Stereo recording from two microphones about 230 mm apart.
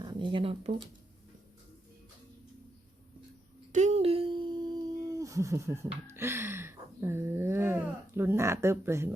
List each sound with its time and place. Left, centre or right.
0.0 s speech: centre
3.7 s a sound: right
5.0 s speech: centre